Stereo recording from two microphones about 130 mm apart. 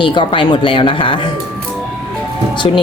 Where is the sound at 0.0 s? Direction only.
40° left (ahead or behind).